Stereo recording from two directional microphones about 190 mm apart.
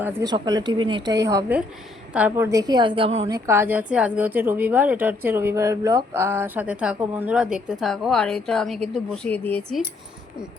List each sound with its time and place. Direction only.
0.0 s speech: 15° right (ahead or behind)
3.2 s a woman's voice: 15° right (ahead or behind); by 9.8 s 5° left (ahead or behind)